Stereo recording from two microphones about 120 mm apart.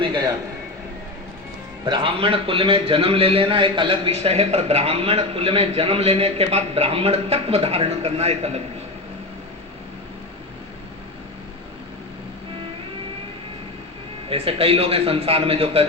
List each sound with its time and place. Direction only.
1.8 s a man's voice: 45° right (ahead or behind); by 8.6 s 60° right (ahead or behind)
14.3 s a man's voice: 55° right (ahead or behind)